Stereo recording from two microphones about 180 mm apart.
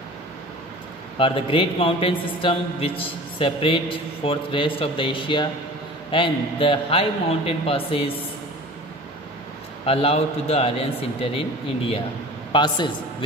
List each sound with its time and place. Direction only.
1.1 s a man's voice: 30° left (ahead or behind)
9.8 s a man's voice: 35° left (ahead or behind)